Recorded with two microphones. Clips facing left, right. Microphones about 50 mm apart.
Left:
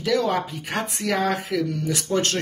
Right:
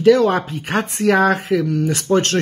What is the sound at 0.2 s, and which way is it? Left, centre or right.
Speech, right.